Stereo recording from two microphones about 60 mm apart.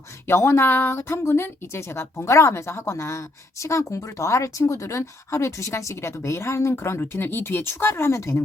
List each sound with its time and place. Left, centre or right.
0.3 s a woman's voice: left